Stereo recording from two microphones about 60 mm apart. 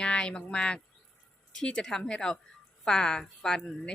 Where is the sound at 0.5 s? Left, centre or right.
Centre.